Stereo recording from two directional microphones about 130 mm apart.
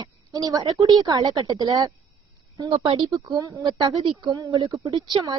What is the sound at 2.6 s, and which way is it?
Speech, 45° right (ahead or behind).